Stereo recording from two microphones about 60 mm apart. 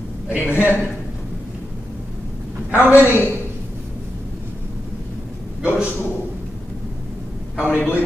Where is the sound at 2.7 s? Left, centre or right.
Right.